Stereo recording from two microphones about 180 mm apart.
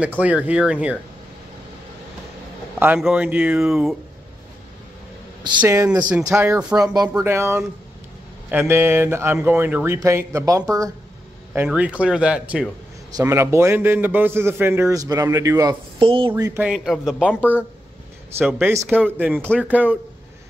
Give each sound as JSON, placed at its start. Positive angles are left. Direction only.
{"t": 0.2, "sound": "a man's voice", "side_deg": -5}
{"t": 2.8, "sound": "speech", "side_deg": -5}
{"t": 5.6, "sound": "a man's voice", "side_deg": -10}
{"t": 11.5, "sound": "a man's voice", "side_deg": -10}
{"t": 16.0, "sound": "speech", "side_deg": -30}
{"t": 16.5, "sound": "speech", "side_deg": -5}
{"t": 17.3, "sound": "speech", "side_deg": 10}
{"t": 18.4, "sound": "speech", "side_deg": 0}
{"t": 18.7, "sound": "a man's voice", "side_deg": -15}